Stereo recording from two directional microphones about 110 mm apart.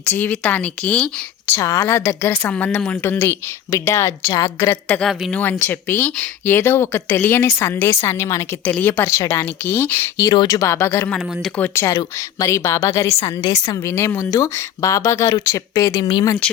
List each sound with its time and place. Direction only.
0.0 s speech: 15° left (ahead or behind)
1.5 s a woman's voice: 30° left (ahead or behind)
2.3 s a woman's voice: 15° left (ahead or behind); by 4.8 s 30° left (ahead or behind)
5.3 s a woman's voice: 20° left (ahead or behind)
10.2 s a woman's voice: 40° left (ahead or behind)
11.1 s a woman's voice: 10° left (ahead or behind); by 13.9 s 35° left (ahead or behind)
13.9 s a woman's voice: 20° left (ahead or behind)